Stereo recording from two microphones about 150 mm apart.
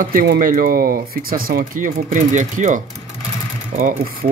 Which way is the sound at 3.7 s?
65° right (ahead or behind).